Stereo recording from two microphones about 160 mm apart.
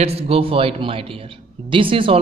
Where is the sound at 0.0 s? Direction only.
35° right (ahead or behind).